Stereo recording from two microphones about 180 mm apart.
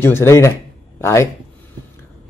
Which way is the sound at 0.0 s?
15° left (ahead or behind).